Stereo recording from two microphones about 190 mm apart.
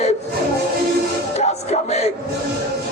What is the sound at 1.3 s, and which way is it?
Music, 35° left (ahead or behind).